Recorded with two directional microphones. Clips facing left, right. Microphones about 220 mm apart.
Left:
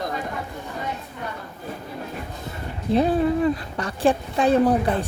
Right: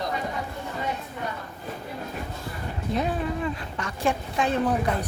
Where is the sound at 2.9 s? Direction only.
35° left (ahead or behind).